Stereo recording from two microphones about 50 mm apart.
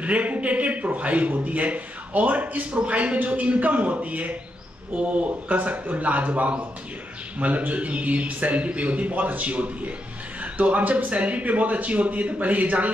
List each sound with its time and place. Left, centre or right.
0.0 s a man's voice: right